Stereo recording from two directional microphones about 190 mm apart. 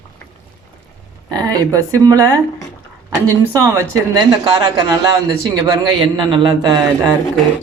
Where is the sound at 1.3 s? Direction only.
20° right (ahead or behind).